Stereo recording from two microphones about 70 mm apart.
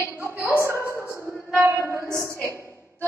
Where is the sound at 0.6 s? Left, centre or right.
Right.